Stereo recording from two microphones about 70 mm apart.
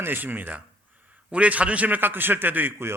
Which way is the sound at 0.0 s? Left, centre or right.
Right.